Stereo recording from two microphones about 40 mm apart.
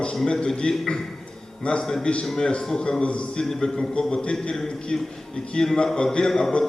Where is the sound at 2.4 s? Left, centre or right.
Left.